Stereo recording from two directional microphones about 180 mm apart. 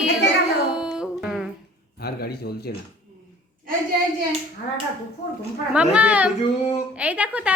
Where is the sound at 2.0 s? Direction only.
60° left (ahead or behind).